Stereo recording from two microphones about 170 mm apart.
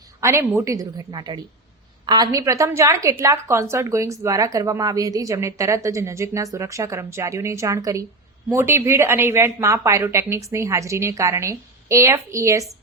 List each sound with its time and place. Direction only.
0.2 s a woman's voice: 15° right (ahead or behind)